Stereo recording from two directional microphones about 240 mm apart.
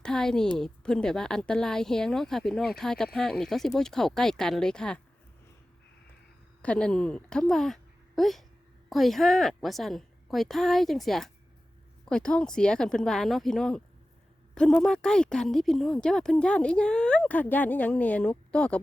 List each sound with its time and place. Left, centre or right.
0.0 s a woman's voice: centre
6.6 s a woman's voice: centre